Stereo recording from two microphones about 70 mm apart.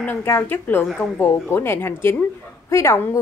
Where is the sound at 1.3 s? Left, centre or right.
Left.